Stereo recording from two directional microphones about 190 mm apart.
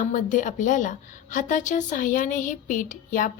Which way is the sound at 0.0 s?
40° left (ahead or behind).